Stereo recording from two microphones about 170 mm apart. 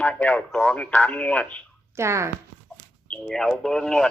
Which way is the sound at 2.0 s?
15° right (ahead or behind).